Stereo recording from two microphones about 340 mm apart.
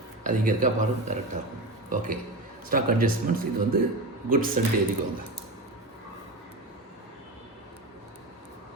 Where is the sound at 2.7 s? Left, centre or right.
Right.